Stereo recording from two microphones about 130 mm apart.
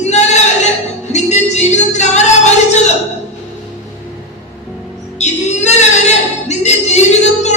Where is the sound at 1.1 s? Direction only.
60° left (ahead or behind).